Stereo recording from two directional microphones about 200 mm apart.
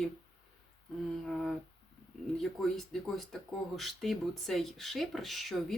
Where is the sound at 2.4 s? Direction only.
Centre (ahead or behind).